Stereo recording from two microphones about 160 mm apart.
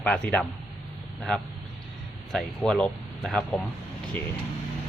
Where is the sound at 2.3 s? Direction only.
Centre (ahead or behind).